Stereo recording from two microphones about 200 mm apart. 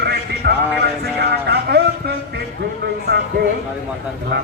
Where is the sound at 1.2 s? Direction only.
55° right (ahead or behind).